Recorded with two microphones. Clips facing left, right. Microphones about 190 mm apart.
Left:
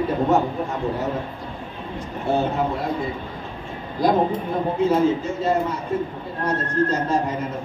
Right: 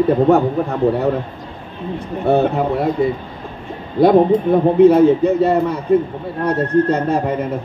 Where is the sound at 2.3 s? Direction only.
60° right (ahead or behind).